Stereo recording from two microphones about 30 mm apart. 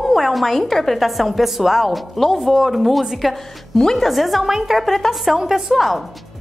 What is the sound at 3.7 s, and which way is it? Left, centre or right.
Speech, centre.